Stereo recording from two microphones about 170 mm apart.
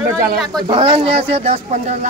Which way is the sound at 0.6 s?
30° right (ahead or behind).